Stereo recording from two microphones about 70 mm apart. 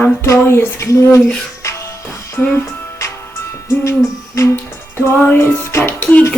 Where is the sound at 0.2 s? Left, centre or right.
Left.